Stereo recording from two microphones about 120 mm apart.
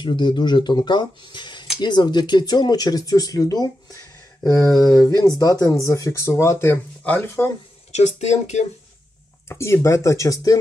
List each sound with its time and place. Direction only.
0.0 s speech: 40° left (ahead or behind); by 7.5 s 20° left (ahead or behind)
7.9 s speech: 70° left (ahead or behind)
9.5 s speech: 20° left (ahead or behind)